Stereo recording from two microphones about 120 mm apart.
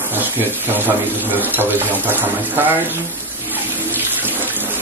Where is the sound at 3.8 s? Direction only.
15° right (ahead or behind).